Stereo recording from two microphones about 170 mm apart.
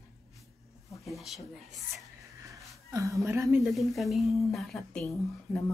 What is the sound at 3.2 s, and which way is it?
Speech, 15° right (ahead or behind).